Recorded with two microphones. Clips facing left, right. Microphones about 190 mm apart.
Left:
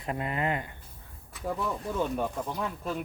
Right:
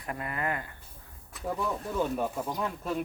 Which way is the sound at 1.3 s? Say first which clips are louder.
Even; centre (ahead or behind).